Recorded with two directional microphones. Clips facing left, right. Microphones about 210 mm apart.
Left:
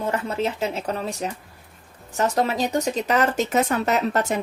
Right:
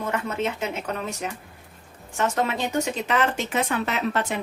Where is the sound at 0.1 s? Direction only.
35° left (ahead or behind).